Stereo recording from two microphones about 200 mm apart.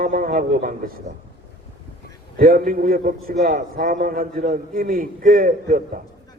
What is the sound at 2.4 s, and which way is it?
A man's voice, 45° right (ahead or behind).